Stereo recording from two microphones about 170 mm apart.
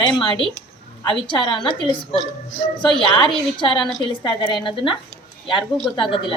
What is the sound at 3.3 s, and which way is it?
A woman's voice, 30° left (ahead or behind).